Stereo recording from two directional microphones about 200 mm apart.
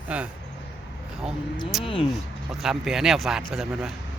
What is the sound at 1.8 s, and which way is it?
Speech, 25° left (ahead or behind).